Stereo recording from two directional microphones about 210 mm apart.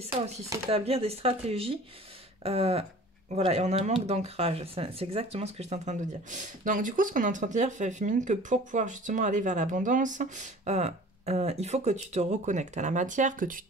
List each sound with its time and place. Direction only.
0.7 s speech: 30° right (ahead or behind)